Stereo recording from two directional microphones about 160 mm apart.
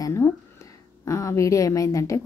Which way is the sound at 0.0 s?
20° left (ahead or behind).